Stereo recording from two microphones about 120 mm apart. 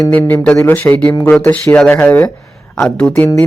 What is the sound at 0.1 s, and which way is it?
Speech, 15° left (ahead or behind).